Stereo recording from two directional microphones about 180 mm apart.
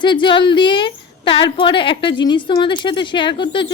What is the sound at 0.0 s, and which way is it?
A woman's voice, 25° left (ahead or behind).